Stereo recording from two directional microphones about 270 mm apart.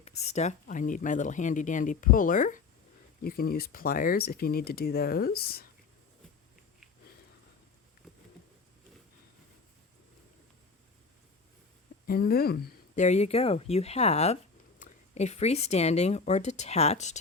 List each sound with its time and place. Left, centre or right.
0.0 s speech: left
12.0 s speech: left